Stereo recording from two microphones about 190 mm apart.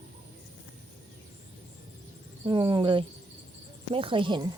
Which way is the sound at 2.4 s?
25° right (ahead or behind).